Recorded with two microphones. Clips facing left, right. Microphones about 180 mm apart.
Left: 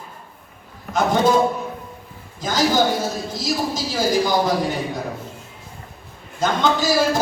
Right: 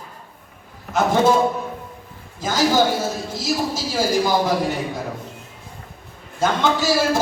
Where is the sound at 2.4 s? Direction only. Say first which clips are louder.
Right 1 dB; 10° right (ahead or behind).